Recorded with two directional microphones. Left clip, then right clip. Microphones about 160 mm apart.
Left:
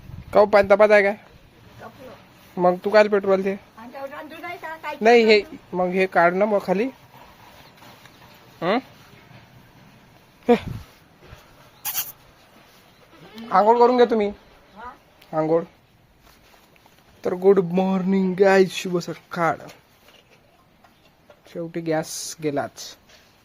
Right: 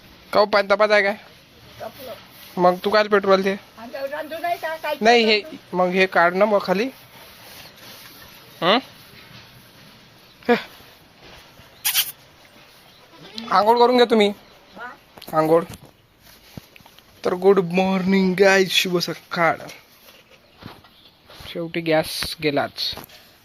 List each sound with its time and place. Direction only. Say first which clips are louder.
0.3 s speech: left 2 dB; 5° left (ahead or behind)
2.6 s speech: left 1 dB; 5° left (ahead or behind)
4.0 s speech: right 8 dB; 20° left (ahead or behind)
4.8 s speech: left 1 dB; 5° left (ahead or behind)
6.6 s speech: right 1 dB; 25° left (ahead or behind)
8.5 s speech: right 4 dB; 5° left (ahead or behind)
10.4 s speech: left 1 dB; 25° left (ahead or behind)
13.8 s speech: right 1 dB; 15° right (ahead or behind)
15.3 s speech: right 4 dB; centre (ahead or behind)
17.2 s speech: right 1 dB; 10° left (ahead or behind)
18.0 s speech: right 2 dB; 5° left (ahead or behind)
21.5 s speech: right 4 dB; centre (ahead or behind)
22.7 s speech: right 13 dB; 15° left (ahead or behind)